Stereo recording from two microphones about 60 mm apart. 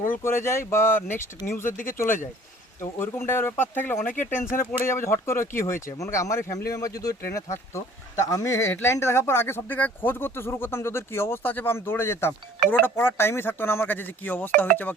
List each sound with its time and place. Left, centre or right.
0.2 s speech: left
8.3 s speech: left
8.5 s speech: left
9.6 s speech: left